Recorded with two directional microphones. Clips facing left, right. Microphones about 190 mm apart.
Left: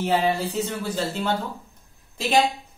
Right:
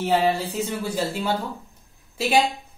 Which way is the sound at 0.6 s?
10° right (ahead or behind).